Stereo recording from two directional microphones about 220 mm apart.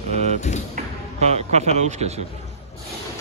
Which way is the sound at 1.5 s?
30° right (ahead or behind).